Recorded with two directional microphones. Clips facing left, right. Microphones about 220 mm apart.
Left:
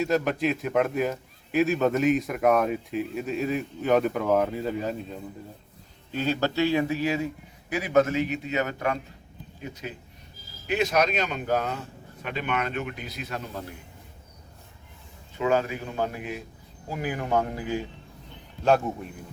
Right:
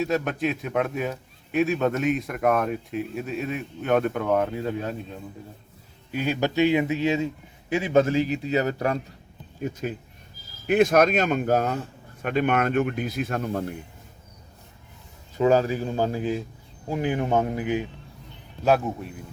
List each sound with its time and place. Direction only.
0.0 s a man's voice: centre (ahead or behind)
6.1 s a man's voice: 15° right (ahead or behind); by 9.0 s 35° right (ahead or behind)
9.6 s speech: 50° right (ahead or behind)
15.4 s a man's voice: 35° right (ahead or behind); by 17.8 s 20° right (ahead or behind)
18.6 s a man's voice: 5° right (ahead or behind)